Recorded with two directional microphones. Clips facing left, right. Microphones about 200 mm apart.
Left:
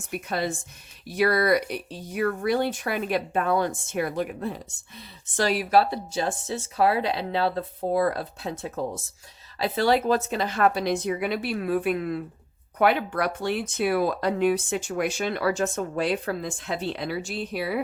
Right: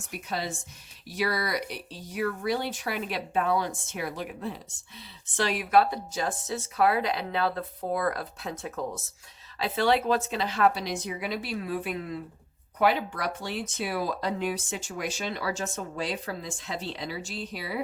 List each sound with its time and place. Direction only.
0.1 s speech: 55° left (ahead or behind)
5.4 s speech: 35° left (ahead or behind)
9.6 s speech: 40° left (ahead or behind); by 17.7 s 60° left (ahead or behind)